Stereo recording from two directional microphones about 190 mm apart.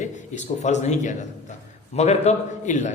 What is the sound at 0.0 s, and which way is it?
A man's voice, 40° left (ahead or behind).